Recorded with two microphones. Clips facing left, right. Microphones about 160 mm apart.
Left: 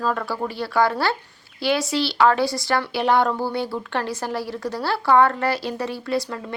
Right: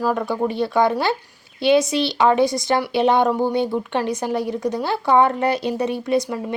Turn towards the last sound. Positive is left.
turn(degrees=-20)  # may be behind; listen again after turning